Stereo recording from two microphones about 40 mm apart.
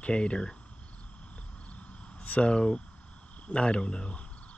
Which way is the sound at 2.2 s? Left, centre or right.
Left.